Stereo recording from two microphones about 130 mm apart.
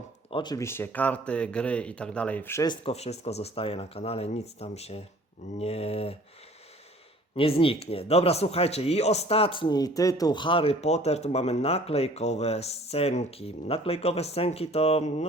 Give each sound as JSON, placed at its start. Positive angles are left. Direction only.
{"t": 0.3, "sound": "speech", "side_deg": 40}
{"t": 0.5, "sound": "speech", "side_deg": 20}
{"t": 2.6, "sound": "speech", "side_deg": 50}
{"t": 7.3, "sound": "speech", "side_deg": 45}